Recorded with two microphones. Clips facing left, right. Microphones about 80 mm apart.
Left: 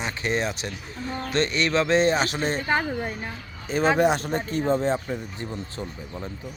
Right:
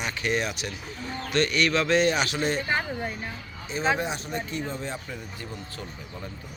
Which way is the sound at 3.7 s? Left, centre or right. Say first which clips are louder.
Left 4 dB; left.